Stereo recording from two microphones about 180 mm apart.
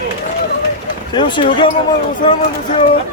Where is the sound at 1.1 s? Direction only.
25° left (ahead or behind).